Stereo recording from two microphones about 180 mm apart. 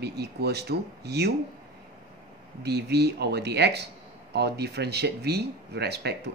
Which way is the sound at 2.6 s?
65° right (ahead or behind).